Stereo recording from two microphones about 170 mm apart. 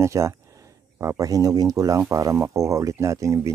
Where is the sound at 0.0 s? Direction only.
15° right (ahead or behind).